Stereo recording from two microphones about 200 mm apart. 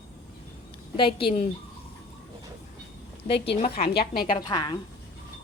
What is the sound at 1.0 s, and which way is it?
Speech, 25° left (ahead or behind).